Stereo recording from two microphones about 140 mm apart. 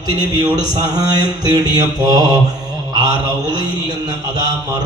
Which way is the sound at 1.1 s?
30° right (ahead or behind).